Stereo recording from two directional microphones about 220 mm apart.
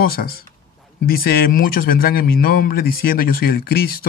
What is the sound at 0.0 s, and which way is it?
Speech, 45° left (ahead or behind).